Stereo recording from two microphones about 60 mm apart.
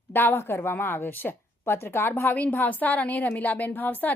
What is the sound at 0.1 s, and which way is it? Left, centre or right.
A woman's voice, left.